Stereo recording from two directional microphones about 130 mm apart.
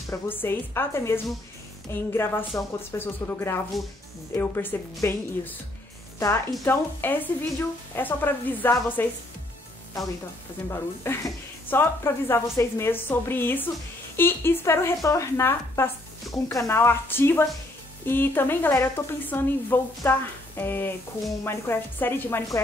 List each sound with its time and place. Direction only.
0.1 s speech: 15° left (ahead or behind)
3.7 s speech: centre (ahead or behind)
4.3 s a woman's voice: 15° left (ahead or behind)
10.7 s speech: 20° left (ahead or behind)